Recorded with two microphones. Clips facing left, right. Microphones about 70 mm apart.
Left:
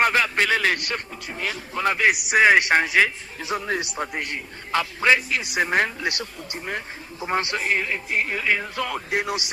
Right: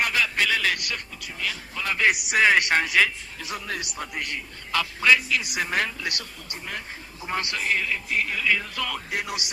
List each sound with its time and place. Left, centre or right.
0.0 s a man's voice: left
2.0 s a man's voice: centre